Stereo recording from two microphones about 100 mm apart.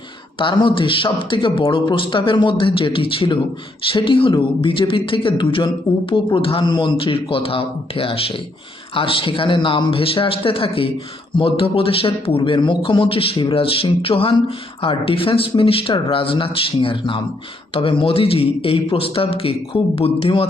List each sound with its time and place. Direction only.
0.3 s speech: 55° left (ahead or behind); by 20.5 s 70° left (ahead or behind)